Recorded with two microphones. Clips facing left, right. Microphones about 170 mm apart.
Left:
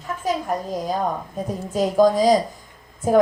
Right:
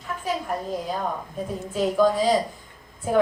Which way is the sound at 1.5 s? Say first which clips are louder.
Left 2 dB; 40° left (ahead or behind).